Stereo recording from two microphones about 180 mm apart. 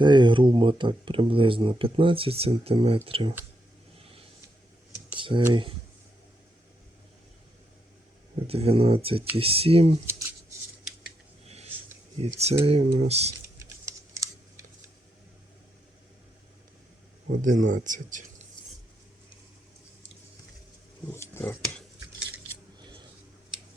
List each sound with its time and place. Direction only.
0.0 s speech: 25° right (ahead or behind)
5.1 s speech: 25° right (ahead or behind)
8.4 s speech: 35° right (ahead or behind)
10.1 s a sound: 15° right (ahead or behind)
11.4 s a sound: 35° right (ahead or behind)
12.4 s speech: 35° right (ahead or behind)
13.6 s typing: 15° right (ahead or behind)
17.4 s speech: 45° right (ahead or behind)
21.1 s speech: 15° left (ahead or behind)